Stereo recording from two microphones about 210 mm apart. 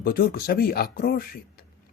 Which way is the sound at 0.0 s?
45° left (ahead or behind).